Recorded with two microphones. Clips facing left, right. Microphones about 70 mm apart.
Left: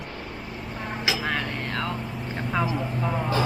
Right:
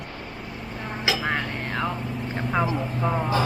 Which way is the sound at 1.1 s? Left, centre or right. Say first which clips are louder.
Right 2 dB; right.